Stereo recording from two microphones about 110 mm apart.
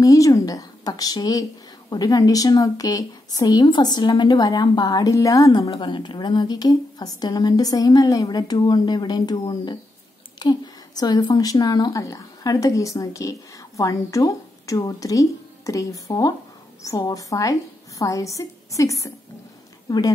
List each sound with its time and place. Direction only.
0.0 s a woman's voice: 30° left (ahead or behind)
5.7 s a woman's voice: 50° left (ahead or behind); by 19.1 s 30° left (ahead or behind)